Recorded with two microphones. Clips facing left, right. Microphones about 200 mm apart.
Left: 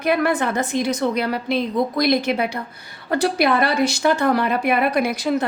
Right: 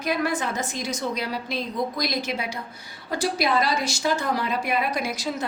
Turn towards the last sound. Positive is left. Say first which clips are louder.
# left 8 dB
turn(degrees=60)  # may be behind; listen again after turning